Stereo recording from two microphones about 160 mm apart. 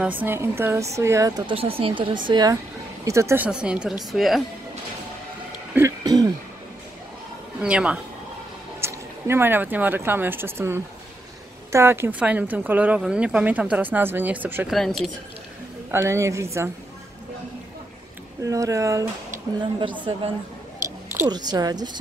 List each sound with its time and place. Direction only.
0.0 s speech: 10° right (ahead or behind)
1.5 s speech: 35° right (ahead or behind); by 3.4 s 15° right (ahead or behind)
3.4 s a woman's voice: 5° right (ahead or behind)
5.8 s throat clearing: 25° right (ahead or behind)
7.6 s speech: 5° right (ahead or behind)
14.7 s a woman's voice: centre (ahead or behind)
15.9 s speech: 15° right (ahead or behind)
18.4 s speech: 20° right (ahead or behind)
21.3 s speech: 25° right (ahead or behind)